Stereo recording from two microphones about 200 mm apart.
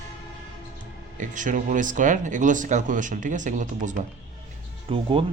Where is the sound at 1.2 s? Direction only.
40° right (ahead or behind).